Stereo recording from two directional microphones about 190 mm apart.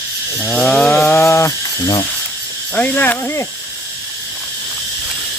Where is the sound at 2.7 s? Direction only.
10° left (ahead or behind).